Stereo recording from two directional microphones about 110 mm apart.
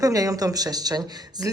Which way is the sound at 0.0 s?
30° right (ahead or behind).